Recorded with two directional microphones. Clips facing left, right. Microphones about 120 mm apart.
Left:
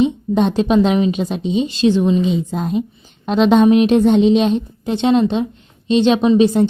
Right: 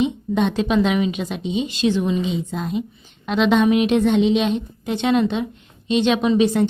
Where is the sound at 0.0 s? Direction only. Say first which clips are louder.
Left 4 dB; 35° left (ahead or behind).